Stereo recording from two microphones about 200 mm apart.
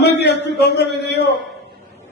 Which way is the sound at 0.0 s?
55° left (ahead or behind).